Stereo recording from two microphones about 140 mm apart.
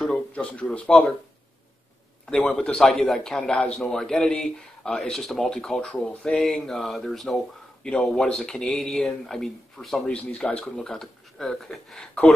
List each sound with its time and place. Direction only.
0.0 s speech: 5° left (ahead or behind)
2.2 s speech: 5° left (ahead or behind)